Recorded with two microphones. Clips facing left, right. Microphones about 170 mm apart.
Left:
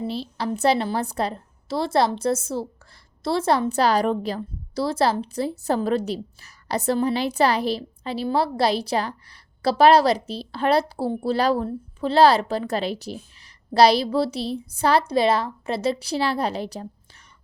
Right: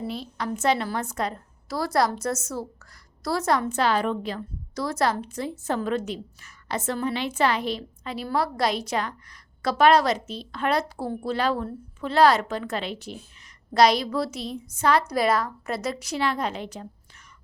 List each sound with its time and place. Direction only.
0.0 s a woman's voice: 30° left (ahead or behind)